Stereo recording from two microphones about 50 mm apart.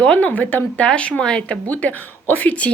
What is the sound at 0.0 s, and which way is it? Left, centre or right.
Speech, left.